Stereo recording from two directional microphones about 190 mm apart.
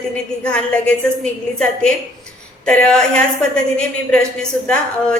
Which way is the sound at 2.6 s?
5° left (ahead or behind).